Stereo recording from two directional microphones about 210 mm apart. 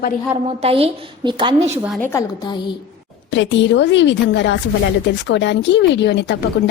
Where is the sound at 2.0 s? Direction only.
10° left (ahead or behind).